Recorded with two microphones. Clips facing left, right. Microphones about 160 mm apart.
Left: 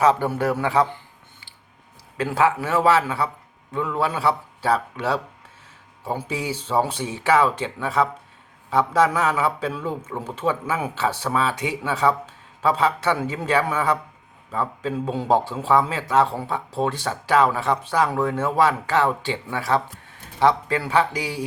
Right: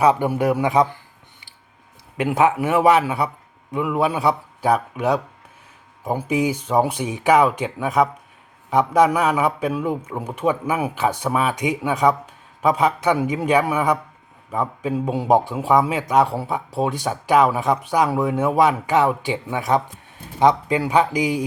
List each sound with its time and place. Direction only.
0.0 s a man's voice: 15° right (ahead or behind)
2.1 s a man's voice: 20° right (ahead or behind)